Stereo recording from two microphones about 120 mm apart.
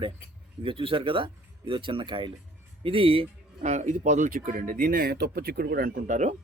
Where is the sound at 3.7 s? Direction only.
85° right.